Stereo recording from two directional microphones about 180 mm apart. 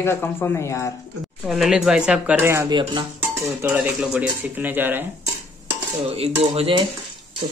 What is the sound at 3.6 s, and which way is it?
Speech, 10° right (ahead or behind).